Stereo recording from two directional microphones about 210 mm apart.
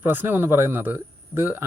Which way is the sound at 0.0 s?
10° right (ahead or behind).